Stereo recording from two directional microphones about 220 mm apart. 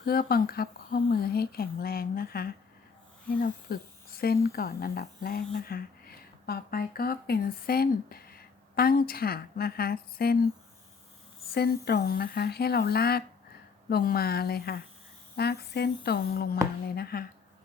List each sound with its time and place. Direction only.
0.0 s speech: 45° left (ahead or behind)
11.5 s speech: 45° left (ahead or behind)